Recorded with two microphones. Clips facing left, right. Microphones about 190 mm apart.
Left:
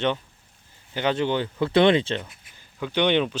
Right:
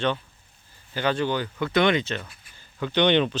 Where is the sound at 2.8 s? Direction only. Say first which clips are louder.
Right 1 dB; 10° left (ahead or behind).